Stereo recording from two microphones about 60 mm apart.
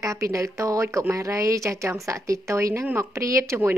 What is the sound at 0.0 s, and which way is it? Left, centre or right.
Speech, right.